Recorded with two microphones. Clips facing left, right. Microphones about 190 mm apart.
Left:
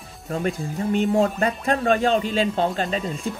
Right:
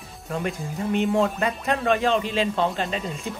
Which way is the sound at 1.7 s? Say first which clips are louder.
Left 2 dB; 40° left (ahead or behind).